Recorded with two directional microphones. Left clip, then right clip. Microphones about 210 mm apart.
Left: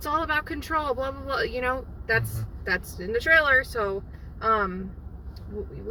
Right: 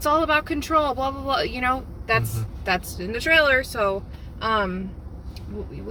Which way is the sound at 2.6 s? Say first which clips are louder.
Right 3 dB; 20° right (ahead or behind).